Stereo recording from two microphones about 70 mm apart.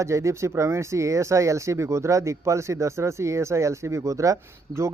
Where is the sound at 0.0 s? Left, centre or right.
Right.